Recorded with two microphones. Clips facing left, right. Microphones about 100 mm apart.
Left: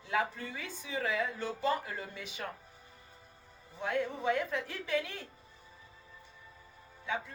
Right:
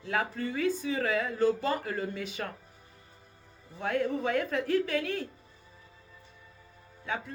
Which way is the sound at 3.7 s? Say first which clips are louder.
Right 4 dB; 90° right.